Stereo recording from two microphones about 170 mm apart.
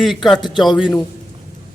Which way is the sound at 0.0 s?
Centre (ahead or behind).